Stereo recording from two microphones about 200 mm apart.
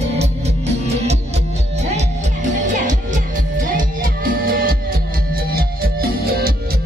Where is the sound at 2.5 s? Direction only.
40° right (ahead or behind).